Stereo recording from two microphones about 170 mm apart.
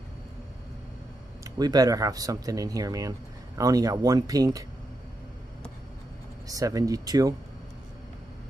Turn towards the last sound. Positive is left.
turn(degrees=-20)  # may be behind; listen again after turning